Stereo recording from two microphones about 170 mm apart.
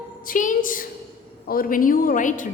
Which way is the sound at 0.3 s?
50° left (ahead or behind).